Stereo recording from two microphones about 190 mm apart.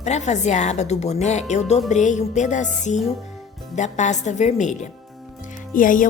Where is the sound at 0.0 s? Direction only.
35° left (ahead or behind).